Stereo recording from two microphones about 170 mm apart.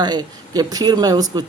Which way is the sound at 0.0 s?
25° right (ahead or behind).